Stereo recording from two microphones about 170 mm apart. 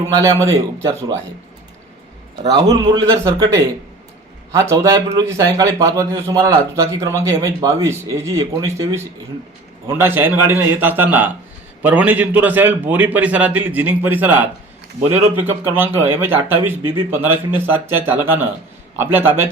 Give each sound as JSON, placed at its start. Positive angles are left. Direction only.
{"t": 0.0, "sound": "a man's voice", "side_deg": -20}
{"t": 2.5, "sound": "a man's voice", "side_deg": -20}